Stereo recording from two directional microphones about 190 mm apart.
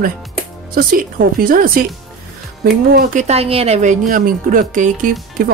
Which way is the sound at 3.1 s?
35° right (ahead or behind).